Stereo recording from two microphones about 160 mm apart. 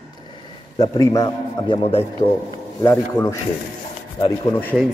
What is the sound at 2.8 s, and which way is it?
Speech, 15° left (ahead or behind).